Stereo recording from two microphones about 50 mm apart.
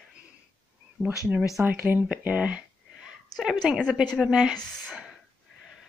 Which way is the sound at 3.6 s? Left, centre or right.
Centre.